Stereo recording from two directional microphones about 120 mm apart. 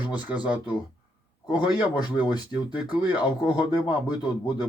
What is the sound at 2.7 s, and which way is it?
Speech, 10° right (ahead or behind).